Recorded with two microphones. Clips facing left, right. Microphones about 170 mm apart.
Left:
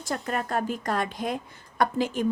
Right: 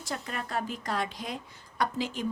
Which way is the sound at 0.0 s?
50° left (ahead or behind).